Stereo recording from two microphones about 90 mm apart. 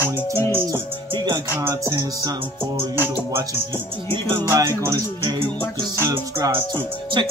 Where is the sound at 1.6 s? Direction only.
30° right (ahead or behind).